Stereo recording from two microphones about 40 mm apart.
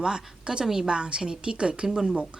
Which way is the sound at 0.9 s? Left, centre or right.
Right.